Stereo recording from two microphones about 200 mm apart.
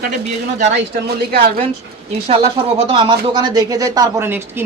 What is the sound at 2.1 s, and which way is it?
Speech, 30° right (ahead or behind).